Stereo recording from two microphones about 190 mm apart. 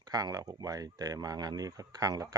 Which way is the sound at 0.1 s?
20° right (ahead or behind).